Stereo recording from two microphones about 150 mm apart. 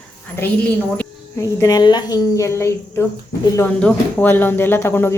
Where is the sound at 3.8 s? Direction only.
10° left (ahead or behind).